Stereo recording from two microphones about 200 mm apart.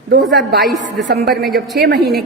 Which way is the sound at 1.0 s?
55° right (ahead or behind).